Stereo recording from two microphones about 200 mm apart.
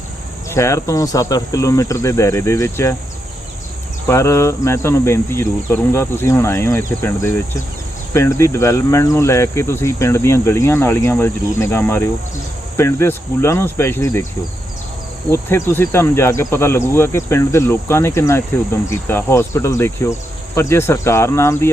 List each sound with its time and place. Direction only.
0.5 s speech: 15° left (ahead or behind)
4.0 s speech: 15° left (ahead or behind)
15.3 s speech: 10° left (ahead or behind)